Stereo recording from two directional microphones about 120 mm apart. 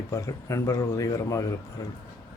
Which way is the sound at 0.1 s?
25° left (ahead or behind).